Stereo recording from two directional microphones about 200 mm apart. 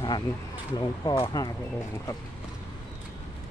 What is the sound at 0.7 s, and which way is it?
Speech, 25° left (ahead or behind).